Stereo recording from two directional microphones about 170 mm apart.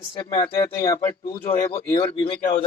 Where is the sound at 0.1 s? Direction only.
25° left (ahead or behind).